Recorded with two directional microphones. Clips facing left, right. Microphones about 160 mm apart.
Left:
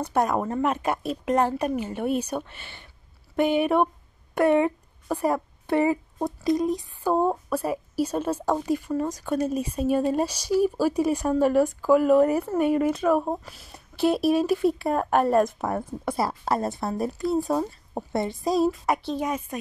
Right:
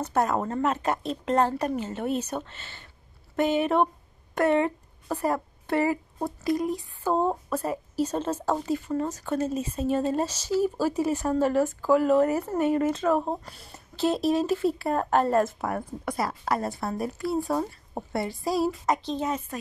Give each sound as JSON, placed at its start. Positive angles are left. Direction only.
{"t": 0.0, "sound": "a woman's voice", "side_deg": 15}
{"t": 17.5, "sound": "speech", "side_deg": 10}
{"t": 18.1, "sound": "speech", "side_deg": 20}